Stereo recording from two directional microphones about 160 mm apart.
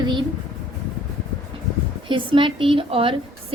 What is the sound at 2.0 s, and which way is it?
A woman's voice, 30° right (ahead or behind).